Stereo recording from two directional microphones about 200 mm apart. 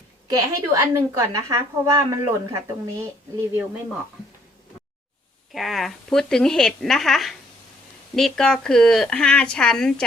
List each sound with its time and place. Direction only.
0.3 s a woman's voice: 15° right (ahead or behind)
5.5 s speech: centre (ahead or behind)